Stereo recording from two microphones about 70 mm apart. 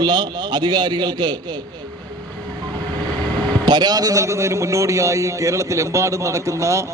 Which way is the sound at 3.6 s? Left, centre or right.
Right.